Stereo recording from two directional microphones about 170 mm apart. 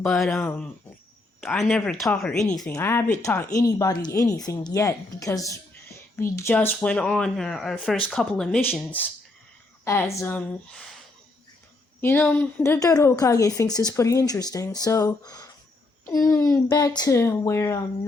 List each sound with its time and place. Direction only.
0.0 s speech: 5° left (ahead or behind)
1.4 s speech: centre (ahead or behind)
2.7 s speech: 15° left (ahead or behind)
9.8 s speech: 15° left (ahead or behind)
12.0 s speech: 10° left (ahead or behind)